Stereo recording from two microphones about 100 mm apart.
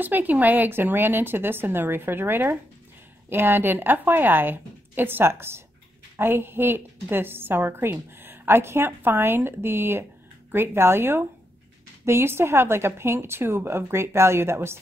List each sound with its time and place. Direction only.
0.0 s a woman's voice: 20° right (ahead or behind)